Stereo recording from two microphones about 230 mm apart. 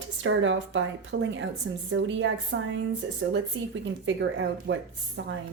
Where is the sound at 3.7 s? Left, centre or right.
Right.